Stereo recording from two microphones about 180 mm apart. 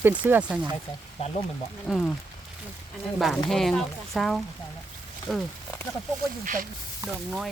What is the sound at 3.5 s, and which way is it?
Speech, centre (ahead or behind).